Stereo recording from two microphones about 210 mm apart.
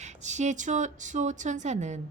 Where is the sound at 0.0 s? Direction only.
35° right (ahead or behind).